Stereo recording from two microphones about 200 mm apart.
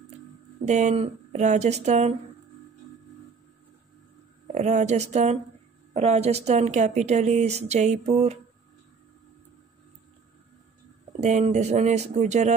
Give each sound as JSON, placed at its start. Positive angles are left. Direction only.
{"t": 0.7, "sound": "speech", "side_deg": -35}
{"t": 4.5, "sound": "speech", "side_deg": -35}
{"t": 11.1, "sound": "speech", "side_deg": -35}